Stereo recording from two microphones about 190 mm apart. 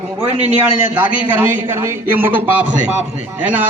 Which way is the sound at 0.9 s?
10° right (ahead or behind).